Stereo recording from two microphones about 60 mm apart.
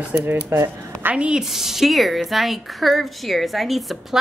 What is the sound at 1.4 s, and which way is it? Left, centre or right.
Speech, centre.